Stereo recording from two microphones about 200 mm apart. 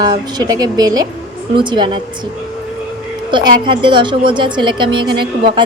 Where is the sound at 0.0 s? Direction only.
20° right (ahead or behind).